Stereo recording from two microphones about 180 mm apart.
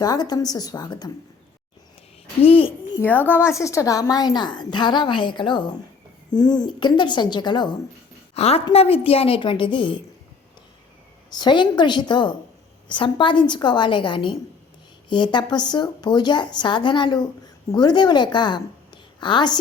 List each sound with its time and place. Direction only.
0.0 s a woman's voice: 20° left (ahead or behind)
2.4 s a child's voice: 30° left (ahead or behind)
3.0 s a woman's voice: 10° left (ahead or behind)
8.4 s a woman's voice: 35° left (ahead or behind)
11.3 s a woman's voice: 25° left (ahead or behind)